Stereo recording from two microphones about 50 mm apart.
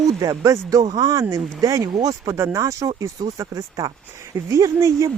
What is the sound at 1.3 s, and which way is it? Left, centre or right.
Speech, right.